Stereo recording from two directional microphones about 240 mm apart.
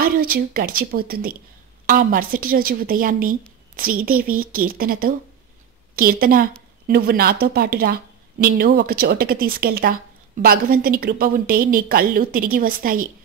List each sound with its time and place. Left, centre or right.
0.0 s speech: right